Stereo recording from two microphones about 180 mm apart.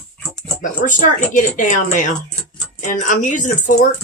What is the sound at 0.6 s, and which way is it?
Speech, 45° left (ahead or behind).